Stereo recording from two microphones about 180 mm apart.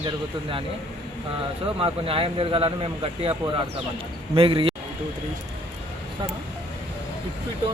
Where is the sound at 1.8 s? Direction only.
30° right (ahead or behind).